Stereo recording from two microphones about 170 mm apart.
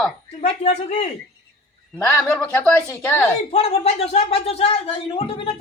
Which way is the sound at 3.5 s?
40° left (ahead or behind).